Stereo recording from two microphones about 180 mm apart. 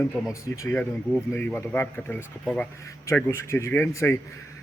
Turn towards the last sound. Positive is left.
turn(degrees=15)  # may be behind; listen again after turning